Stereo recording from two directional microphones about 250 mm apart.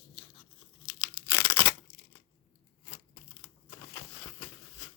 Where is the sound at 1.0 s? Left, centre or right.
Centre.